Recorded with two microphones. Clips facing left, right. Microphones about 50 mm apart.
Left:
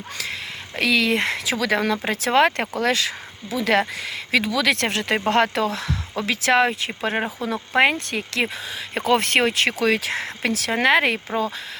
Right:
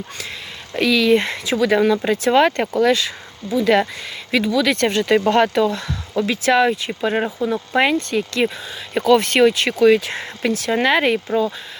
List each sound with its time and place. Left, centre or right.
0.8 s speech: left
1.5 s speech: left
2.0 s speech: left
5.1 s speech: left
6.5 s speech: left
7.4 s speech: left
8.1 s speech: left
9.8 s speech: left
10.8 s speech: left